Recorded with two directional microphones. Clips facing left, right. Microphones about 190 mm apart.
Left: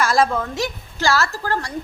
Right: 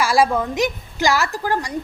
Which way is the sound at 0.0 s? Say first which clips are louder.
Right 1 dB; 10° right (ahead or behind).